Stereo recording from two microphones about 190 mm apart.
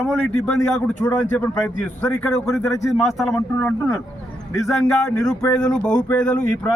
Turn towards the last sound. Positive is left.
turn(degrees=5)  # may be behind; listen again after turning